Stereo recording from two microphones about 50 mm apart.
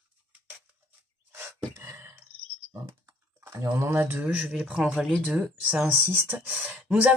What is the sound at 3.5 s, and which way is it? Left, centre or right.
Speech, right.